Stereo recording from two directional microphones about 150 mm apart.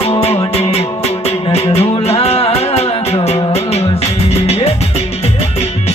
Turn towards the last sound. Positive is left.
turn(degrees=40)  # may be behind; listen again after turning